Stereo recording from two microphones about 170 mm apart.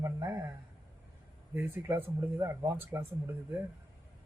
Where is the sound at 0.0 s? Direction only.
15° right (ahead or behind).